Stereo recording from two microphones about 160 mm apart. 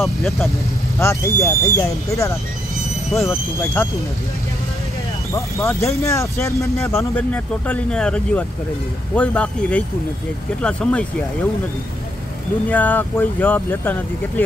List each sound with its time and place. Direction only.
0.9 s speech: 15° left (ahead or behind)
5.3 s speech: 15° left (ahead or behind)
12.6 s speech: 10° left (ahead or behind)